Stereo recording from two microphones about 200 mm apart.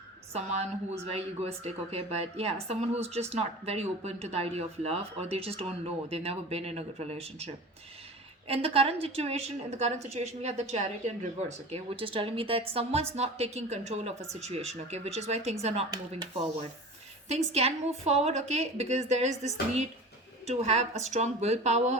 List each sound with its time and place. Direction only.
0.3 s a woman's voice: 30° right (ahead or behind)
15.9 s speech: 20° right (ahead or behind)
17.2 s a woman's voice: 30° right (ahead or behind)
20.5 s a woman's voice: 35° right (ahead or behind)